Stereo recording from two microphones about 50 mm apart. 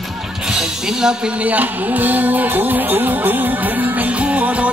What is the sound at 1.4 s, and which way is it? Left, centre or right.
Music, right.